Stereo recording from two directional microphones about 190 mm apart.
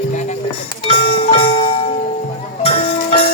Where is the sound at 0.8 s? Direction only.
30° left (ahead or behind).